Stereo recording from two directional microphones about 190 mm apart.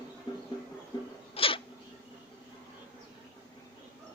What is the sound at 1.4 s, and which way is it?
Zipper, 30° left (ahead or behind).